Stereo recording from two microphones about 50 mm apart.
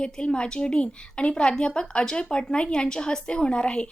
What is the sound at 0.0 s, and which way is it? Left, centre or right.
A woman's voice, centre.